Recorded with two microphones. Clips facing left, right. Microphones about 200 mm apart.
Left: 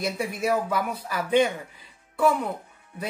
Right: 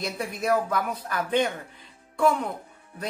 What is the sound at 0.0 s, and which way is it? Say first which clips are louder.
Speech: left 2 dB; 10° left (ahead or behind).